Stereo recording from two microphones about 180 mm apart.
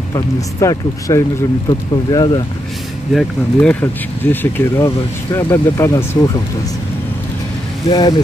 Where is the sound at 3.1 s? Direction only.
5° left (ahead or behind).